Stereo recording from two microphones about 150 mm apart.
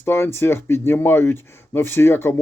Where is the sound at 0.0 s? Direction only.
15° left (ahead or behind).